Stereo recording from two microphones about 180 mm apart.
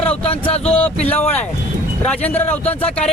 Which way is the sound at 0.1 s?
30° left (ahead or behind).